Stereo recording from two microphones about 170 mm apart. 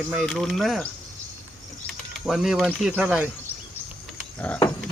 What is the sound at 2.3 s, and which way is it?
Speech, centre (ahead or behind).